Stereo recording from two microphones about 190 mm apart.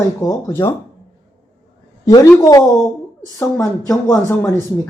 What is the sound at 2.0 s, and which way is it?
Speech, 15° left (ahead or behind).